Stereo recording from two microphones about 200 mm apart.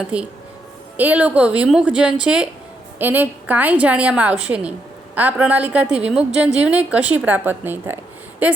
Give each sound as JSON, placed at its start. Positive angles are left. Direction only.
{"t": 0.1, "sound": "a woman's voice", "side_deg": -5}